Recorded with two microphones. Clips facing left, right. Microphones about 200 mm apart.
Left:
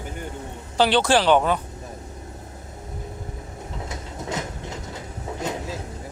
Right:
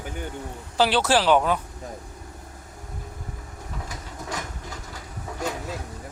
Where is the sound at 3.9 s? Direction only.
25° left (ahead or behind).